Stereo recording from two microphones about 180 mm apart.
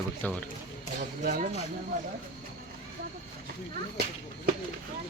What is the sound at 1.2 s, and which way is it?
Speech, 45° right (ahead or behind).